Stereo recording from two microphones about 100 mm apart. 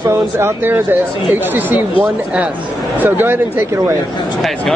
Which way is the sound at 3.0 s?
20° right (ahead or behind).